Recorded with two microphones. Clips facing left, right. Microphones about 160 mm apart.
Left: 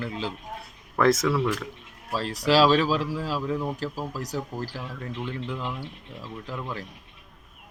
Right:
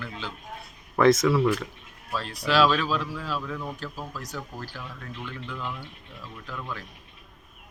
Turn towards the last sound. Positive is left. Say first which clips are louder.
# left 3 dB
turn(degrees=30)  # may be behind; listen again after turning